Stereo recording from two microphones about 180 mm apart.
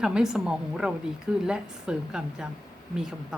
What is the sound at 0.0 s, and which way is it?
A woman's voice, 5° right (ahead or behind).